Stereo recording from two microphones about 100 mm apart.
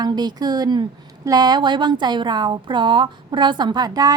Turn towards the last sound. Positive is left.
turn(degrees=-40)  # may be behind; listen again after turning